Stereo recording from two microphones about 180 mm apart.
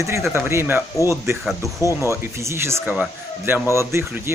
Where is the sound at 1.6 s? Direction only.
20° left (ahead or behind).